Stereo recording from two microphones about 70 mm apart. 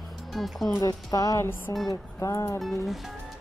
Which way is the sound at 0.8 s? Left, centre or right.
Left.